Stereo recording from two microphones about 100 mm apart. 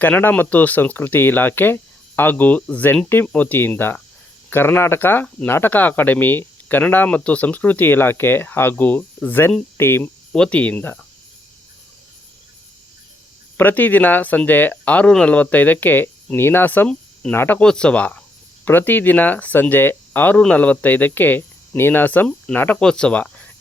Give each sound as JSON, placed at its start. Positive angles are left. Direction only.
{"t": 0.0, "sound": "speech", "side_deg": 20}
{"t": 10.3, "sound": "speech", "side_deg": 10}
{"t": 13.6, "sound": "speech", "side_deg": 20}
{"t": 17.6, "sound": "speech", "side_deg": 10}